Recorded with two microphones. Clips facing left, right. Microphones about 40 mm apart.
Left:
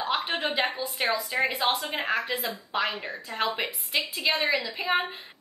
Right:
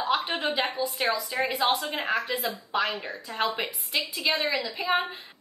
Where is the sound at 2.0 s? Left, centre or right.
Centre.